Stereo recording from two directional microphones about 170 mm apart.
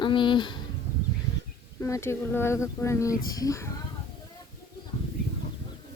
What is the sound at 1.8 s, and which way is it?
Speech, 15° left (ahead or behind).